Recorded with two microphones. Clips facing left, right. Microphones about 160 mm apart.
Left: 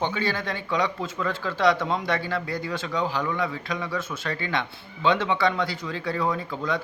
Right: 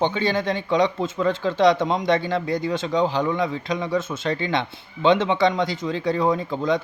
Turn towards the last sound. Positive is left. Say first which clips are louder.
# right 6 dB
turn(degrees=-20)  # may be behind; listen again after turning